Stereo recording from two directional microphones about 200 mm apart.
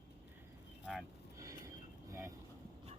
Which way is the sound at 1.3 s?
15° right (ahead or behind).